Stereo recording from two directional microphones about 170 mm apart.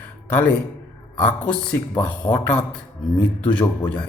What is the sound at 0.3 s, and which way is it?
A man's voice, 10° left (ahead or behind).